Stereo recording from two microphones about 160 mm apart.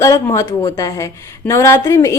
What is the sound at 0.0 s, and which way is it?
A woman's voice, 20° left (ahead or behind).